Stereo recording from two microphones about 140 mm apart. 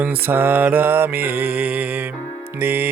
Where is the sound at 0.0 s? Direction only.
15° right (ahead or behind).